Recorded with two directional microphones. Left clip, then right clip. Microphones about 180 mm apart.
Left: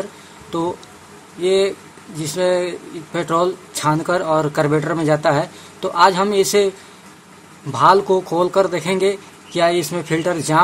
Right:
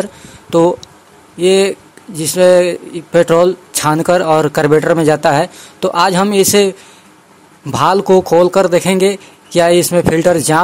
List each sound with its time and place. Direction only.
0.0 s speech: 45° right (ahead or behind)
7.7 s speech: 45° right (ahead or behind)